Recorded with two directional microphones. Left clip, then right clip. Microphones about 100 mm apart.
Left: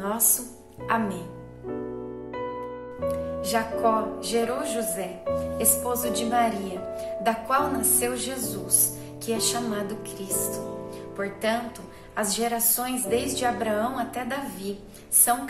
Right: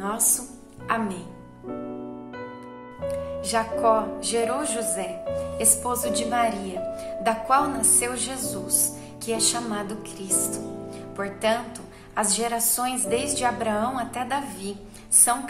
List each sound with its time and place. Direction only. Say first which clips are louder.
0.0 s music: right 1 dB; 35° right (ahead or behind)
0.8 s a woman's voice: even; 35° right (ahead or behind)
3.3 s a woman's voice: right 1 dB; 35° right (ahead or behind)